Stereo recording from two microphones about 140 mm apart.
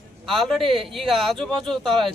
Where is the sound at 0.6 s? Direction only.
40° right (ahead or behind).